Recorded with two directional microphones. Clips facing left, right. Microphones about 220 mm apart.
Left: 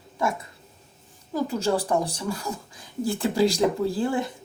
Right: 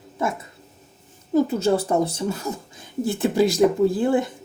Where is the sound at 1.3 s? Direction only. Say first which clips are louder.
Right 5 dB; 25° right (ahead or behind).